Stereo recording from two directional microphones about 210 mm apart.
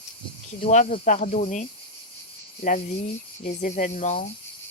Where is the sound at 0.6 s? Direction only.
35° left (ahead or behind).